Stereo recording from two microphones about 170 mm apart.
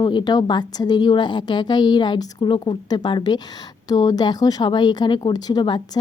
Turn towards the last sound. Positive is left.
turn(degrees=25)  # may be behind; listen again after turning